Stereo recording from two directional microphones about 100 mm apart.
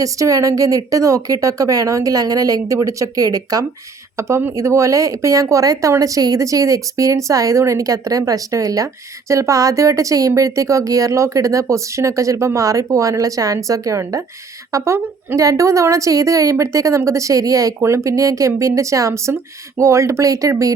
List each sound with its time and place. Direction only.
0.0 s a woman's voice: 35° right (ahead or behind)
4.2 s a woman's voice: 25° right (ahead or behind)